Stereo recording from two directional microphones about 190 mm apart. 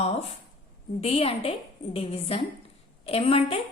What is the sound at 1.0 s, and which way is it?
A woman's voice, 30° left (ahead or behind).